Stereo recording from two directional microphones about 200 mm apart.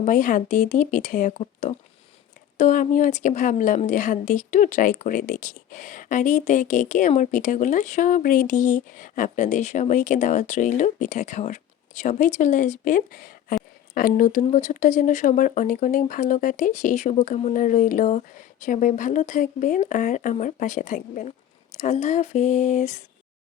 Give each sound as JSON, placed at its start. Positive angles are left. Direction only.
{"t": 0.0, "sound": "a woman's voice", "side_deg": 40}